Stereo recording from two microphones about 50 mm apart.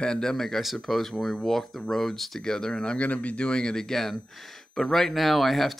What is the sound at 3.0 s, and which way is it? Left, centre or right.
Speech, left.